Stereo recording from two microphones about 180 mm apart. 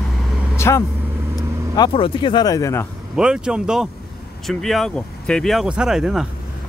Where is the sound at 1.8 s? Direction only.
25° left (ahead or behind).